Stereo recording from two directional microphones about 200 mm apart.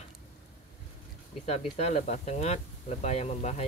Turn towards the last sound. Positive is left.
turn(degrees=35)  # may be behind; listen again after turning